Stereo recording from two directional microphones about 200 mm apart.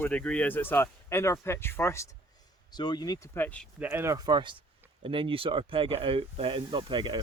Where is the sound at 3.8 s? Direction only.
10° right (ahead or behind).